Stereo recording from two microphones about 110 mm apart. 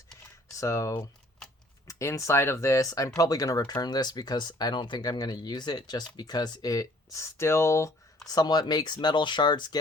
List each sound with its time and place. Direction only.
0.5 s speech: 30° left (ahead or behind)
8.3 s speech: 35° left (ahead or behind)